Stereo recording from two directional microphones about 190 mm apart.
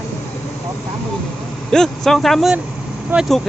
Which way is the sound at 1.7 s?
Centre (ahead or behind).